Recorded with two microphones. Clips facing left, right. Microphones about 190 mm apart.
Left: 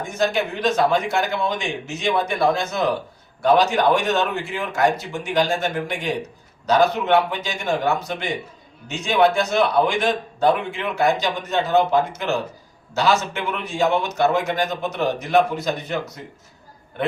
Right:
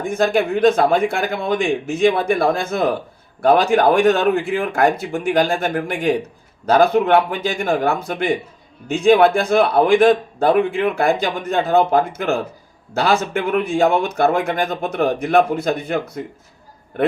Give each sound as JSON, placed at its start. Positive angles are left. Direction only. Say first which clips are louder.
{"t": 0.0, "sound": "a man's voice", "louder": "right 4 dB", "side_deg": -55}